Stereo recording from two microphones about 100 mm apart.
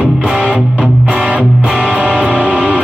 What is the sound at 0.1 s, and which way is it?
Music, 10° right (ahead or behind).